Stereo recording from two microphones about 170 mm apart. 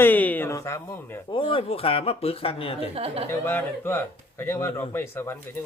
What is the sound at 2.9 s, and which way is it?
Speech, 35° right (ahead or behind).